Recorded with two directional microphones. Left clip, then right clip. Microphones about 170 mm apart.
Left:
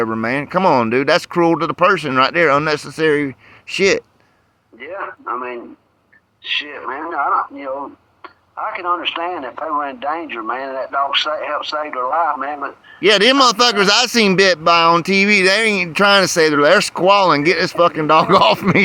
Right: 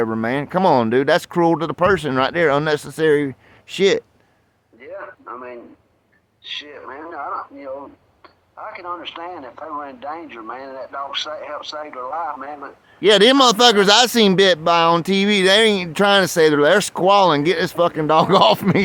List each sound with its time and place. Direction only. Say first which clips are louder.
0.0 s speech: left 2 dB; 20° right (ahead or behind)
4.8 s speech: left 6 dB; 35° left (ahead or behind)
13.0 s speech: left 1 dB; 20° right (ahead or behind)